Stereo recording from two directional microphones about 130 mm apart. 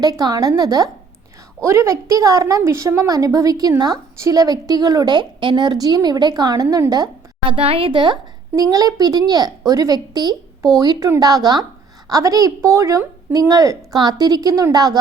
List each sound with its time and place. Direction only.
0.0 s a woman's voice: 30° right (ahead or behind)
7.5 s a woman's voice: 45° right (ahead or behind)